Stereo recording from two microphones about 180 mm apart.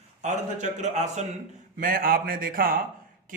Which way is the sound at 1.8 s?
50° right (ahead or behind).